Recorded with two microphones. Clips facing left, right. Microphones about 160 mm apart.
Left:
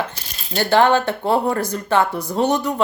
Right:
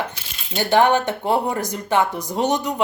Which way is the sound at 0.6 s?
15° right (ahead or behind).